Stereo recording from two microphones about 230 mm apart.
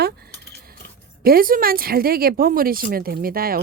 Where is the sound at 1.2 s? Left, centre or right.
Right.